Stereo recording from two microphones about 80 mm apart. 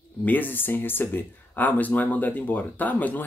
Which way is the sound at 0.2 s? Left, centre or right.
Left.